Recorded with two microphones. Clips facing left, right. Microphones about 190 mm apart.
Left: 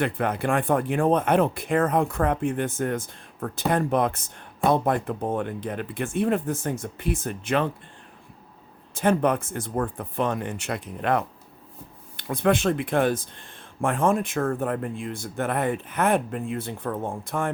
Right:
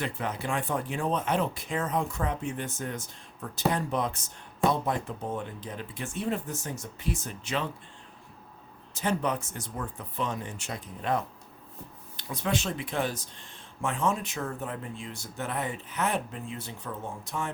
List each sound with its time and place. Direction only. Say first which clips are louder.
0.0 s speech: left 8 dB; 60° left (ahead or behind)
9.0 s speech: left 7 dB; 55° left (ahead or behind)
12.1 s speech: left 9 dB; 55° left (ahead or behind)